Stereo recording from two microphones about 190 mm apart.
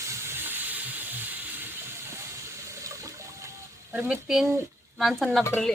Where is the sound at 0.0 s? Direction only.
15° right (ahead or behind).